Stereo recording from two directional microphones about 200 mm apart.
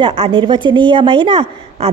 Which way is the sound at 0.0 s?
25° right (ahead or behind).